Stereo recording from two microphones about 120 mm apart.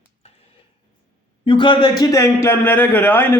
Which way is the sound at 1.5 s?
40° left (ahead or behind).